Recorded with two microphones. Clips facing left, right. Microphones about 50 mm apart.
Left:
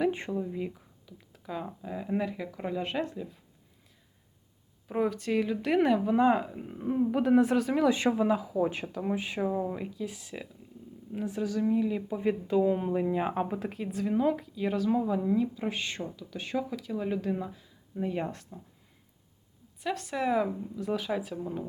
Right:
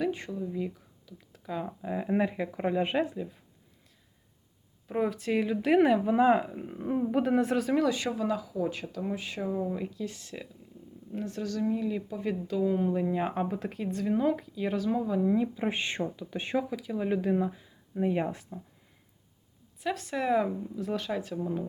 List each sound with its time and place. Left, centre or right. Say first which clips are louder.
0.1 s speech: left 2 dB; left
0.5 s a sound: right 1 dB; centre
1.4 s speech: right 2 dB; centre
1.8 s speech: right 4 dB; centre
4.9 s speech: even; centre
7.9 s speech: left 4 dB; left; by 15.3 s centre
15.3 s speech: right 1 dB; centre
16.6 s speech: right 1 dB; centre
19.8 s speech: even; centre